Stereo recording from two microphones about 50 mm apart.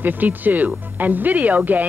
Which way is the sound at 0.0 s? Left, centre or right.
Right.